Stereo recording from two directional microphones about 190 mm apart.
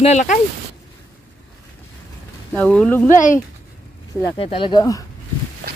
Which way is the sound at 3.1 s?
45° left (ahead or behind).